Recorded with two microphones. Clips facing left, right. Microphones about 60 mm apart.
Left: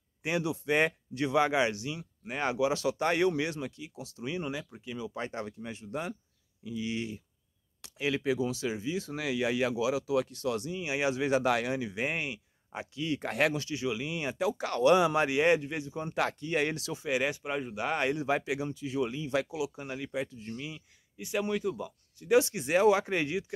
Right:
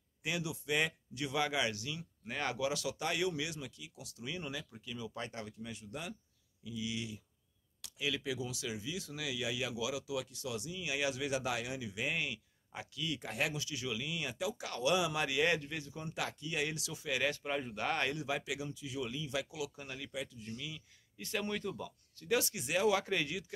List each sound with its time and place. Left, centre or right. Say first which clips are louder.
0.4 s speech: left 8 dB; left
2.8 s speech: left 8 dB; left
11.4 s speech: left 9 dB; left
12.2 s speech: left 3 dB; left
13.2 s speech: left 10 dB; left
13.7 s speech: left 7 dB; left
14.5 s speech: left 10 dB; left
15.2 s speech: left 7 dB; left
16.1 s speech: left 9 dB; left
16.9 s speech: left 5 dB; left
18.1 s speech: left 8 dB; left
18.9 s speech: left 8 dB; left
19.6 s speech: left 7 dB; left
21.2 s speech: left 7 dB; centre; by 23.4 s left